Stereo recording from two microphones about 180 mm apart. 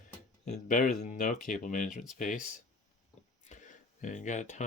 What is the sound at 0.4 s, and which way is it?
Speech, 45° left (ahead or behind).